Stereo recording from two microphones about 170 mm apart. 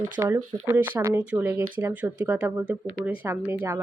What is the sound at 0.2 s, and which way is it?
Speech, 15° right (ahead or behind).